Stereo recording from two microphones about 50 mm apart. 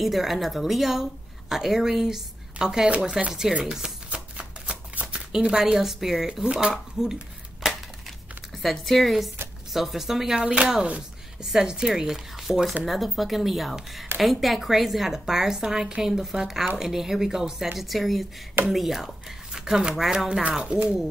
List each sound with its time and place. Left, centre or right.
0.0 s a woman's voice: centre
3.6 s chopping: centre
5.0 s speech: centre
6.4 s a woman's voice: centre
6.7 s dishes: centre
8.6 s a woman's voice: centre
10.4 s speech: right
11.4 s a woman's voice: centre